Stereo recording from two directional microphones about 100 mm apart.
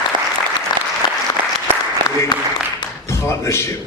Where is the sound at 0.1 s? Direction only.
50° right (ahead or behind).